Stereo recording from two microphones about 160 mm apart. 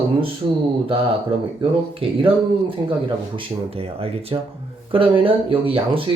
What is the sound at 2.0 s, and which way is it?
Speech, 35° right (ahead or behind).